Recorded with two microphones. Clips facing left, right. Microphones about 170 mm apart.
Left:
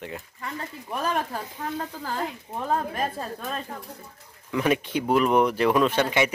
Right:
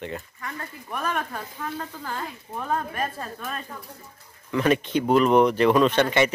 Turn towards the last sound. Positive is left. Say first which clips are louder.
# right 2 dB
turn(degrees=5)  # may be behind; listen again after turning